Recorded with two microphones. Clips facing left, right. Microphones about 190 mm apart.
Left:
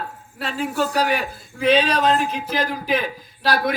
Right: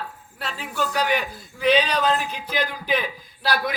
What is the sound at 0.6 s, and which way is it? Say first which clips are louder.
Speech: left 4 dB; 40° left (ahead or behind).